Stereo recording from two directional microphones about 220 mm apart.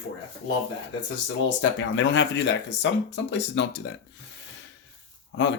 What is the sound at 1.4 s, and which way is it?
Speech, 55° left (ahead or behind).